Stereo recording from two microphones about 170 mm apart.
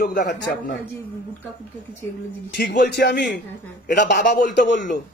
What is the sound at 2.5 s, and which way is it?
Speech, 80° left.